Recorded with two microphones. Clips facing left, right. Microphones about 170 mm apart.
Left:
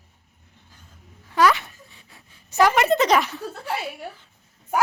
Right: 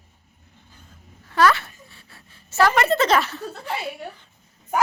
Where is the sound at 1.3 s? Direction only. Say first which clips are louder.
Even; 15° left (ahead or behind).